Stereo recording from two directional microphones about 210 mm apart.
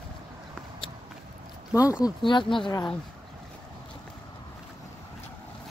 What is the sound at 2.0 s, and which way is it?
Speech, 20° left (ahead or behind).